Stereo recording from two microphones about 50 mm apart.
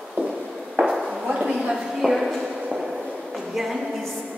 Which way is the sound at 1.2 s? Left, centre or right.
Centre.